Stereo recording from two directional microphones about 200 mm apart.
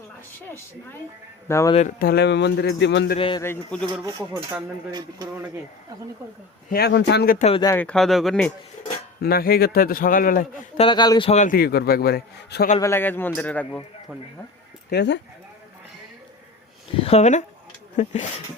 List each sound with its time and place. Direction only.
1.5 s a man's voice: 15° left (ahead or behind)
2.0 s speech: 55° left (ahead or behind)
3.2 s a man's voice: 25° left (ahead or behind)
3.4 s a man's voice: 10° left (ahead or behind)
4.9 s a man's voice: 20° right (ahead or behind)
6.7 s a man's voice: 50° left (ahead or behind)
7.6 s speech: 10° left (ahead or behind)
9.2 s a man's voice: 50° left (ahead or behind)
10.8 s a man's voice: 25° left (ahead or behind); by 12.6 s 50° left (ahead or behind)
12.8 s a man's voice: 10° left (ahead or behind)
14.8 s speech: 60° left (ahead or behind)
17.0 s speech: 30° left (ahead or behind)